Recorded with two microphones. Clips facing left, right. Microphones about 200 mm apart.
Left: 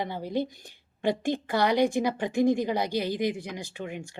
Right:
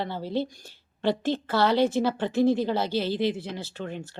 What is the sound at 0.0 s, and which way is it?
Speech, 15° left (ahead or behind).